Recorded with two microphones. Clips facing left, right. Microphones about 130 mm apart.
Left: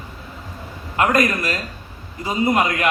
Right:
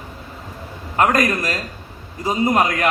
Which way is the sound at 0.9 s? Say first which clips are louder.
Right 1 dB; 35° right (ahead or behind).